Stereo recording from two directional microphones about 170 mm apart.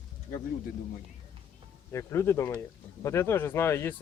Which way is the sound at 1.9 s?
15° left (ahead or behind).